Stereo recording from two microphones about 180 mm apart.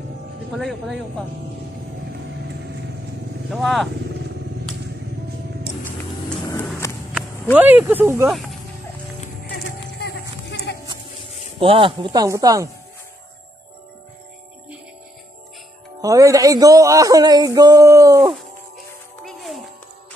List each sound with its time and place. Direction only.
0.6 s speech: centre (ahead or behind)
3.4 s speech: centre (ahead or behind)
6.8 s walk: 15° left (ahead or behind)
7.5 s speech: 10° right (ahead or behind)
9.8 s music: 65° left (ahead or behind)
11.6 s speech: 30° right (ahead or behind)
16.0 s speech: 20° right (ahead or behind)
19.2 s music: centre (ahead or behind)